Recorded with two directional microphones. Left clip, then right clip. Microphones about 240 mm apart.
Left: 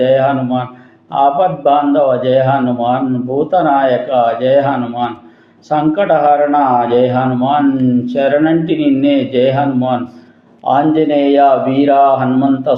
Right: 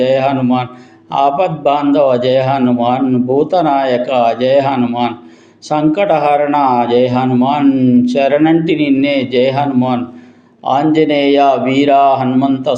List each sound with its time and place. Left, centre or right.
0.0 s a man's voice: right